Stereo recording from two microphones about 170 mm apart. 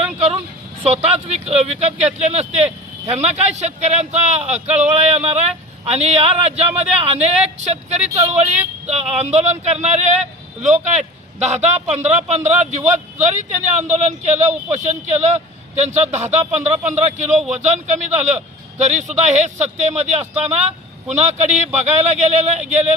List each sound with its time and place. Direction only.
0.8 s a man's voice: 40° right (ahead or behind)